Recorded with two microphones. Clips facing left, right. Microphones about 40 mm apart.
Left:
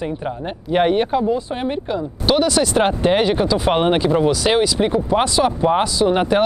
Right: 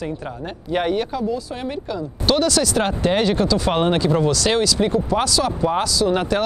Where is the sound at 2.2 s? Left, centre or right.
Centre.